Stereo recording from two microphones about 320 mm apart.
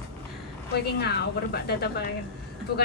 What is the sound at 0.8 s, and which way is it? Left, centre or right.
A woman's voice, left.